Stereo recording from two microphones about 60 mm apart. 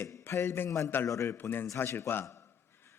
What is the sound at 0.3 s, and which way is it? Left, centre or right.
Speech, left.